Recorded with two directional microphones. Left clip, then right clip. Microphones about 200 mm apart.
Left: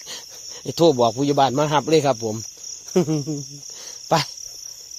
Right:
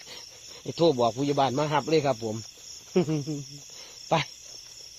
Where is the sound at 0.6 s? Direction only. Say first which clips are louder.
Left 6 dB; 50° left (ahead or behind).